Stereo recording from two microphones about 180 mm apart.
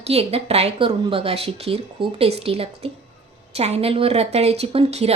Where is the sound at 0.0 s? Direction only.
35° right (ahead or behind).